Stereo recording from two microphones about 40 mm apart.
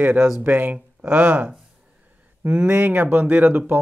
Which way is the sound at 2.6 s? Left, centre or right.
Right.